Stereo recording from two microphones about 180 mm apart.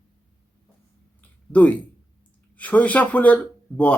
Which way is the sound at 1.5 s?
10° left (ahead or behind).